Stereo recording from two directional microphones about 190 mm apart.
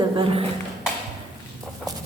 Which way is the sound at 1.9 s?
20° right (ahead or behind).